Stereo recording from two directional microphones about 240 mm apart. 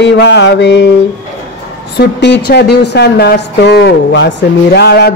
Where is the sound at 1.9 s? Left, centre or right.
Left.